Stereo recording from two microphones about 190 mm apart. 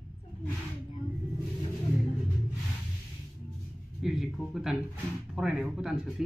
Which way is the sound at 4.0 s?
5° right (ahead or behind).